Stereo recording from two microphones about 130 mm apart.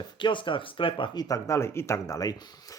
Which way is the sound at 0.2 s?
40° left (ahead or behind).